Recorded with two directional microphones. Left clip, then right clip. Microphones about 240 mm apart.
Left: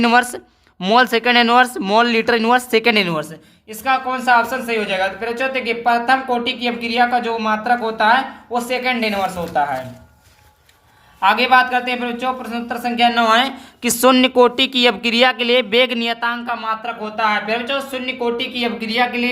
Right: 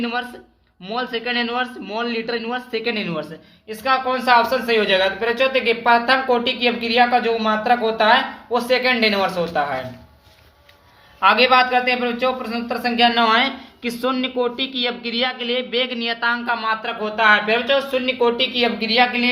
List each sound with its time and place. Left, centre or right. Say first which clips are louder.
0.0 s a man's voice: left 10 dB; left
3.7 s a woman's voice: left 1 dB; centre
11.2 s a man's voice: left 1 dB; centre
13.8 s speech: left 9 dB; left
16.2 s a woman's voice: right 1 dB; centre
18.8 s a man's voice: even; centre